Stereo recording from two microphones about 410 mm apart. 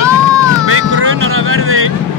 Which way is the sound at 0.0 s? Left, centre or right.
Centre.